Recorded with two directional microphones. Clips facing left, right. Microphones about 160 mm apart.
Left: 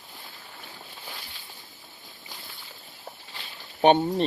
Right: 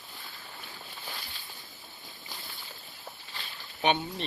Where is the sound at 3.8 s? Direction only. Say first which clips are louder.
Left 9 dB; 40° left (ahead or behind).